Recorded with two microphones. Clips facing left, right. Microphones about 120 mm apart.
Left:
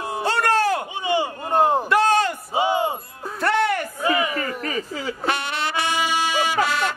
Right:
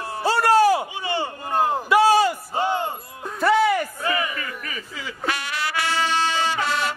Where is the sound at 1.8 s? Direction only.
5° right (ahead or behind).